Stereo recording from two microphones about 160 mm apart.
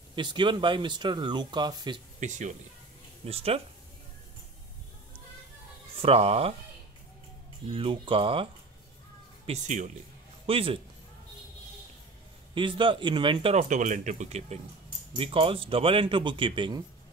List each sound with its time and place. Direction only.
0.1 s speech: 30° right (ahead or behind)
2.1 s speech: 50° right (ahead or behind)
3.3 s speech: 40° right (ahead or behind)
5.9 s speech: 35° right (ahead or behind)
7.6 s speech: 35° right (ahead or behind)
9.5 s speech: 50° right (ahead or behind)
10.4 s a man's voice: 35° right (ahead or behind)
12.5 s speech: 30° right (ahead or behind)